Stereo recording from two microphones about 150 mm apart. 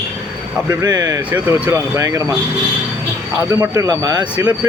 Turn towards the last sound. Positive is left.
turn(degrees=-20)  # may be behind; listen again after turning